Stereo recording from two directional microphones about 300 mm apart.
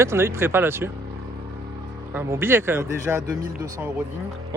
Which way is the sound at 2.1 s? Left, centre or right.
Centre.